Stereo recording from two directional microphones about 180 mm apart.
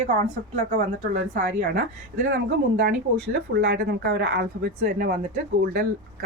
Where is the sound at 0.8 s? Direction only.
40° right (ahead or behind).